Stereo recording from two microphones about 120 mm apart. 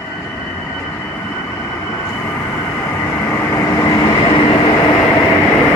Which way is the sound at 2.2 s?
20° left (ahead or behind).